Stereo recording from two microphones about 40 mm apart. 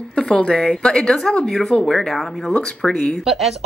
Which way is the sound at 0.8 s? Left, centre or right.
Centre.